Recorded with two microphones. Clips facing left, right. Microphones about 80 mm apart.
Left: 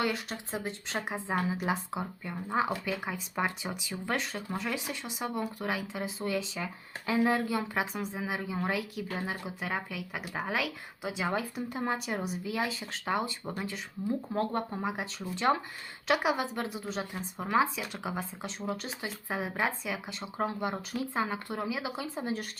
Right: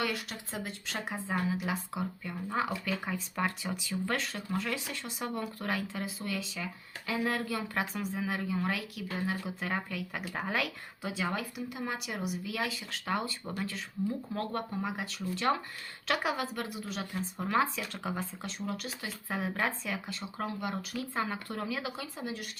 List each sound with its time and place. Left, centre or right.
0.0 s speech: left
9.6 s speech: centre
11.0 s speech: centre
11.5 s speech: left
19.3 s speech: centre
20.1 s speech: left